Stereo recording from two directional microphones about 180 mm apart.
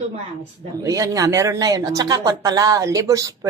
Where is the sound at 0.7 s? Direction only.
20° right (ahead or behind).